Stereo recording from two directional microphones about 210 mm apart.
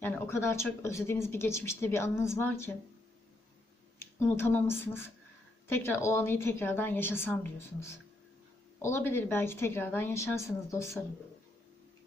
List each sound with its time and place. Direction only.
0.0 s speech: 10° left (ahead or behind)
4.2 s speech: 10° left (ahead or behind)
8.8 s speech: 10° left (ahead or behind)